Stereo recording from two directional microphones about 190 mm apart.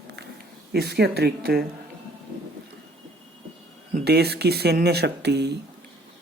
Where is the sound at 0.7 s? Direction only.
60° right (ahead or behind).